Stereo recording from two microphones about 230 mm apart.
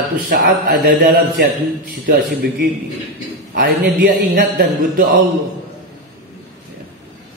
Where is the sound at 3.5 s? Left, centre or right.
Right.